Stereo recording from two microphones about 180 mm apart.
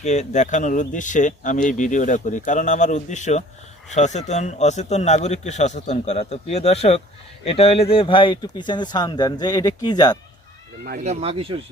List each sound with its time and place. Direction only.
0.0 s a man's voice: 40° left (ahead or behind); by 10.2 s 20° left (ahead or behind)
11.0 s speech: 35° right (ahead or behind)